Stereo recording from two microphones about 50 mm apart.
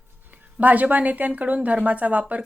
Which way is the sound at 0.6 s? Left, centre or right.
Right.